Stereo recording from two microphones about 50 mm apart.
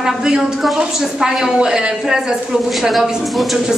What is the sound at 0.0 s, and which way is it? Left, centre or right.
A woman's voice, centre.